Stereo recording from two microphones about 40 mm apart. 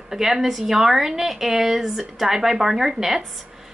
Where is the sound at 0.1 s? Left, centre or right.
Centre.